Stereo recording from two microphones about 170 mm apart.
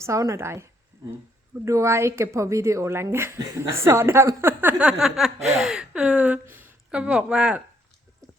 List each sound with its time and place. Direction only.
0.0 s speech: 15° right (ahead or behind)